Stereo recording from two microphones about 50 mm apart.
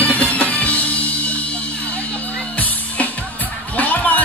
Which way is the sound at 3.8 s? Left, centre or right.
Left.